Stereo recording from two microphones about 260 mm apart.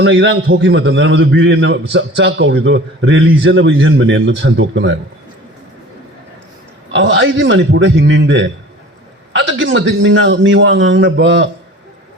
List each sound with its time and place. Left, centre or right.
0.0 s a man's voice: right
6.9 s a man's voice: right